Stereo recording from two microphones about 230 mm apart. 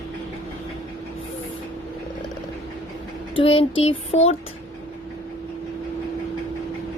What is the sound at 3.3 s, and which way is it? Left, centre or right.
A woman's voice, left.